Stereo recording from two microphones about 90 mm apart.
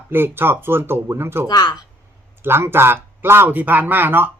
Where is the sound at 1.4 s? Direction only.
50° left (ahead or behind).